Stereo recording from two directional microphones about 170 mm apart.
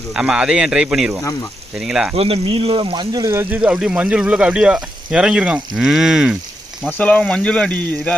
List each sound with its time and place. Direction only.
0.1 s speech: 5° right (ahead or behind)
2.1 s speech: 35° right (ahead or behind); by 6.3 s 5° right (ahead or behind)
6.9 s speech: 5° left (ahead or behind)